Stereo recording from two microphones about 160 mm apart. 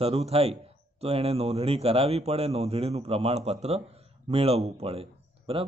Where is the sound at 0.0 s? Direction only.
40° right (ahead or behind).